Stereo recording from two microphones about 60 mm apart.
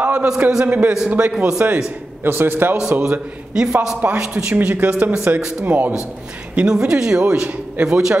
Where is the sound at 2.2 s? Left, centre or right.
Right.